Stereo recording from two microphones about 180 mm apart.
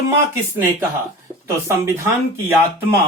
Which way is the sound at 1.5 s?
15° right (ahead or behind).